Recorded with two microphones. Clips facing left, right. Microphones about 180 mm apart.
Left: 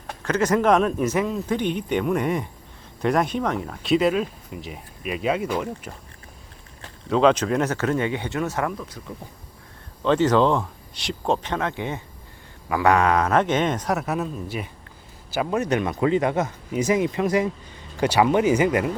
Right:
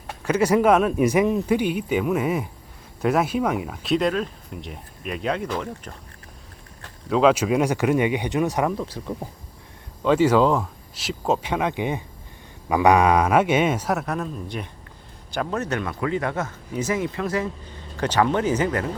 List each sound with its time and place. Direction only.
0.3 s speech: 10° right (ahead or behind); by 5.9 s 10° left (ahead or behind)
7.1 s speech: 5° right (ahead or behind)
8.8 s speech: 30° right (ahead or behind)
10.0 s speech: 10° right (ahead or behind); by 18.9 s 10° left (ahead or behind)